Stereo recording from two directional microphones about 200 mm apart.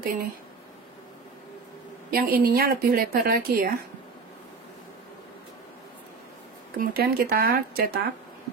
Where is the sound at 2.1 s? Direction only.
50° right (ahead or behind).